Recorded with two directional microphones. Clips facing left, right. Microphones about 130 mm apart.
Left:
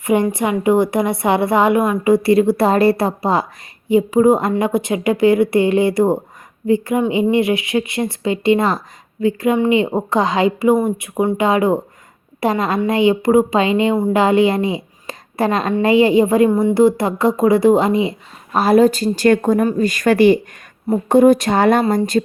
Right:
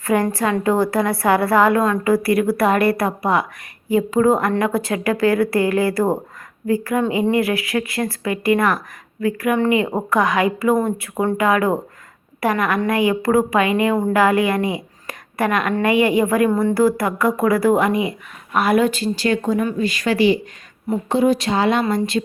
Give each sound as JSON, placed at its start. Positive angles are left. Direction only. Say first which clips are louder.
{"t": 0.0, "sound": "a woman's voice", "louder": "left 2 dB", "side_deg": 20}